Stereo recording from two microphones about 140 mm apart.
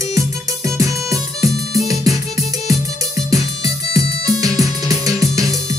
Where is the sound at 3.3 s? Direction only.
25° right (ahead or behind).